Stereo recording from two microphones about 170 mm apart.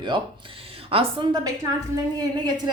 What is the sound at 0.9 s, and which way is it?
Speech, 30° right (ahead or behind).